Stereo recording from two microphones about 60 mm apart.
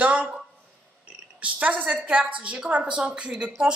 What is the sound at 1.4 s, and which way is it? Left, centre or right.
A woman's voice, right.